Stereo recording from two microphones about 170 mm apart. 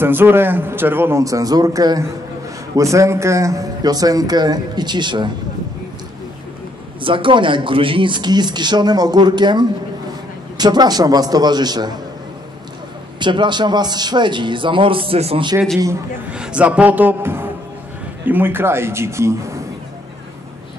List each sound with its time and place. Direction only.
0.0 s a man's voice: 10° right (ahead or behind)
7.0 s speech: 30° right (ahead or behind)
13.2 s speech: 25° right (ahead or behind)
16.3 s a man's voice: 5° right (ahead or behind)